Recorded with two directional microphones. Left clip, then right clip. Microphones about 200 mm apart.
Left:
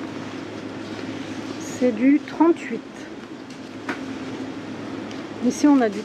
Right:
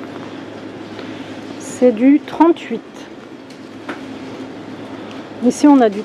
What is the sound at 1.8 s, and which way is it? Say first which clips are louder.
Speech: right 7 dB; 25° right (ahead or behind).